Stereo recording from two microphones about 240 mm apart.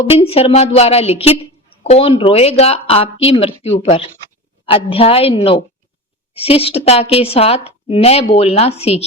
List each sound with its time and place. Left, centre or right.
0.0 s a woman's voice: left